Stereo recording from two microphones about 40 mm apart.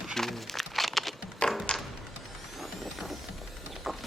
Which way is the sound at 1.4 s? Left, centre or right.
Left.